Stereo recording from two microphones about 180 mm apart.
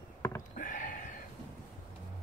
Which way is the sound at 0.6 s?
45° left (ahead or behind).